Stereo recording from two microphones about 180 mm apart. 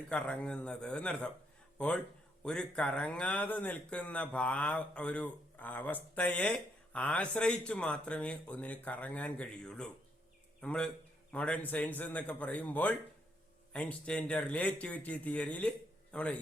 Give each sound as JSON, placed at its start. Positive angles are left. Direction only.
{"t": 0.1, "sound": "speech", "side_deg": 5}
{"t": 2.4, "sound": "speech", "side_deg": 5}